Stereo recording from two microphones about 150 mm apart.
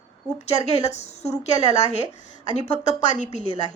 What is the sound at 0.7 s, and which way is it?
Speech, 45° left (ahead or behind).